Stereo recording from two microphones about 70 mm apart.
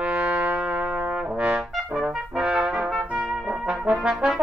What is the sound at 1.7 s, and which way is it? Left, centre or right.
Trumpet, centre.